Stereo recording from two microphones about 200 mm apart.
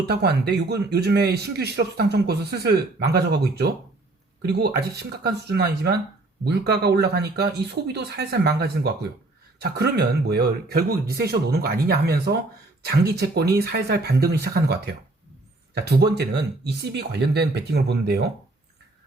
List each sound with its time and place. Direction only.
0.1 s speech: 55° right (ahead or behind)